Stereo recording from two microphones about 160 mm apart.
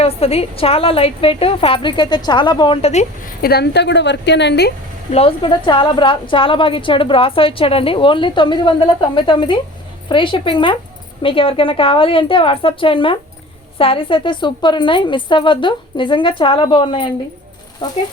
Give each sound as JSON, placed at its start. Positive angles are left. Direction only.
{"t": 0.0, "sound": "a woman's voice", "side_deg": 40}
{"t": 3.2, "sound": "a woman's voice", "side_deg": 75}
{"t": 5.1, "sound": "a woman's voice", "side_deg": 35}